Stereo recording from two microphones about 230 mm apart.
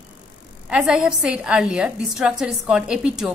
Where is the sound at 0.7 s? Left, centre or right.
Centre.